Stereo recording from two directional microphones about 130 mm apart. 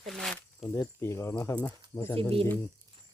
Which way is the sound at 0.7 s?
20° left (ahead or behind).